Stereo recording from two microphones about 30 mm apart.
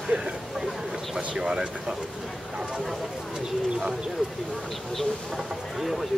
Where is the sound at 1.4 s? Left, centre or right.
Right.